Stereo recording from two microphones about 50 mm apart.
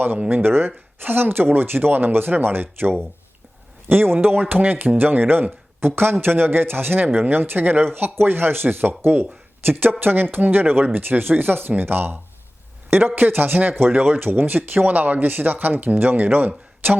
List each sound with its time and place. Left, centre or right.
0.4 s speech: right